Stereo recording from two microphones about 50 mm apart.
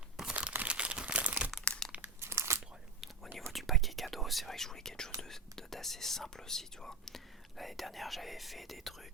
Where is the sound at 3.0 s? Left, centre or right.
Centre.